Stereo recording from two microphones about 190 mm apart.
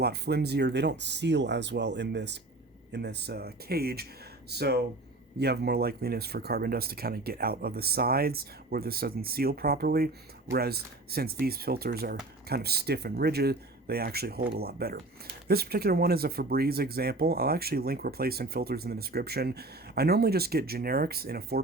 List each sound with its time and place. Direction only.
0.0 s speech: 60° right (ahead or behind)